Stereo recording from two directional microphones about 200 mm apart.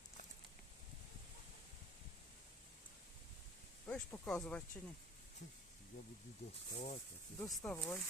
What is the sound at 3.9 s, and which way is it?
Speech, 5° left (ahead or behind).